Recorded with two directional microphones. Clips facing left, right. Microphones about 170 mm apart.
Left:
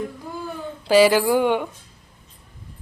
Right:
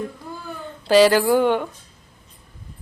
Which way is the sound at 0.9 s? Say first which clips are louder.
Right 1 dB; 10° left (ahead or behind).